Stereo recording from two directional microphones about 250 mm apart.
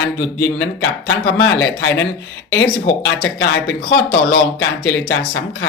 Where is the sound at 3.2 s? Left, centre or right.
Left.